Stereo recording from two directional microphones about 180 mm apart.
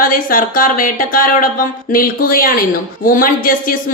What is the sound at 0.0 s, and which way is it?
Speech, 50° left (ahead or behind).